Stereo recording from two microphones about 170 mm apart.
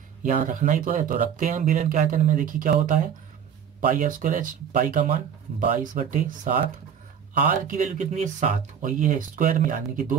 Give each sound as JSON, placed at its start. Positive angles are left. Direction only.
{"t": 0.2, "sound": "speech", "side_deg": -50}